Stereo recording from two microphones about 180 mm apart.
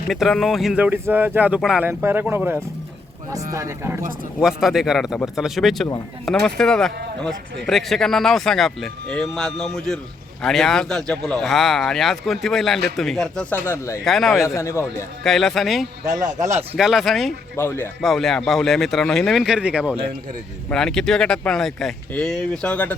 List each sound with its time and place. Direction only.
0.1 s speech: centre (ahead or behind); by 4.0 s 15° right (ahead or behind)
4.4 s speech: centre (ahead or behind); by 14.0 s 15° left (ahead or behind)
14.0 s speech: centre (ahead or behind)
14.3 s speech: 15° left (ahead or behind)
15.2 s speech: centre (ahead or behind)
16.4 s speech: 15° right (ahead or behind)
16.7 s speech: centre (ahead or behind)
17.6 s speech: 15° left (ahead or behind)
18.0 s speech: centre (ahead or behind)